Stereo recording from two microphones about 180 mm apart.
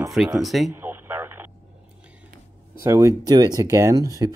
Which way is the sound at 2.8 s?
15° right (ahead or behind).